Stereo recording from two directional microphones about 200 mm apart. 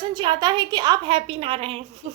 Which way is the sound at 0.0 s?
25° right (ahead or behind).